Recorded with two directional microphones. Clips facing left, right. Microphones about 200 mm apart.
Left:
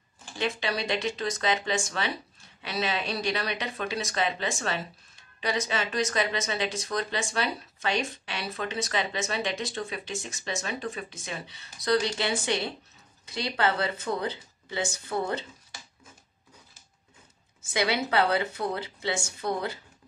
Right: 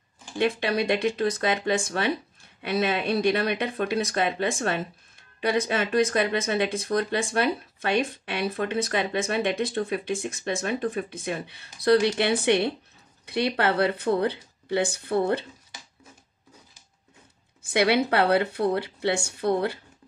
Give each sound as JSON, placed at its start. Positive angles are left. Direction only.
{"t": 0.4, "sound": "speech", "side_deg": -55}
{"t": 17.6, "sound": "speech", "side_deg": -60}